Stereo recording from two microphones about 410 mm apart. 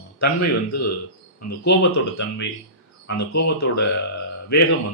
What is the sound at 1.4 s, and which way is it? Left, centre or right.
Speech, left.